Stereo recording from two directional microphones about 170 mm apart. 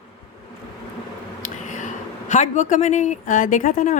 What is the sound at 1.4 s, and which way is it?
Speech, 45° left (ahead or behind).